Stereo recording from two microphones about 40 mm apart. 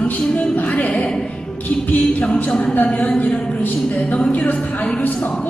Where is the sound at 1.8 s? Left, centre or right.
Left.